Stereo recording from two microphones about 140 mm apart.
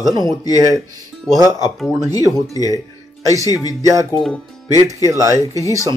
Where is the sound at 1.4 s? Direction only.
25° left (ahead or behind).